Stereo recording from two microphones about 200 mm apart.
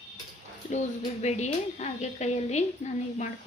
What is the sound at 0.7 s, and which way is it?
A woman's voice, 35° left (ahead or behind).